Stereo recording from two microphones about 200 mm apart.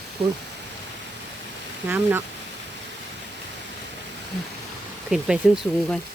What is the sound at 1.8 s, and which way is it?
Speech, 10° right (ahead or behind).